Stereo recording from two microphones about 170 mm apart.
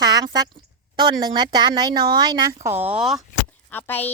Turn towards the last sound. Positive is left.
turn(degrees=10)  # may be behind; listen again after turning